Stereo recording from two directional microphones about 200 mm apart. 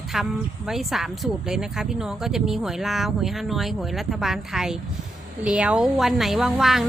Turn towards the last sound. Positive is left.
turn(degrees=0)  # may be behind; listen again after turning